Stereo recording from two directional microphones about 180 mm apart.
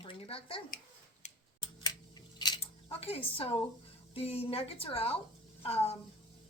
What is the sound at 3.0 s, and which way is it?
A woman's voice, 35° left (ahead or behind).